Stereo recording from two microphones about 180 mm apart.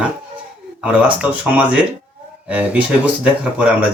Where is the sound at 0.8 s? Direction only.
5° right (ahead or behind).